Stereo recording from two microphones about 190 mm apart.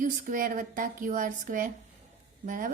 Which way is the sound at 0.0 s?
45° right (ahead or behind).